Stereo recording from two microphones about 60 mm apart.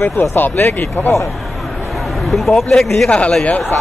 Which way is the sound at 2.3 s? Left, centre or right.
Centre.